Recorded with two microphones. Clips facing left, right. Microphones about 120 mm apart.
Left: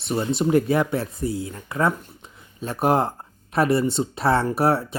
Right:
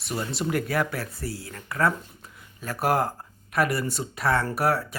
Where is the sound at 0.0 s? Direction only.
25° left (ahead or behind).